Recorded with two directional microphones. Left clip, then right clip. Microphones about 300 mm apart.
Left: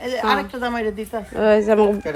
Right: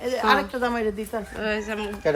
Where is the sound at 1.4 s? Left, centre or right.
Centre.